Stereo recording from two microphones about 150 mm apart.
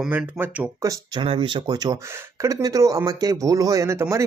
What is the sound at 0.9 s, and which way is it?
Speech, 30° right (ahead or behind).